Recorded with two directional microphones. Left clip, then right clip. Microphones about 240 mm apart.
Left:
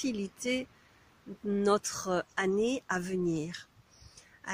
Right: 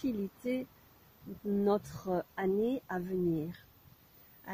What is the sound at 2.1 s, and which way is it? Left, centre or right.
Speech, centre.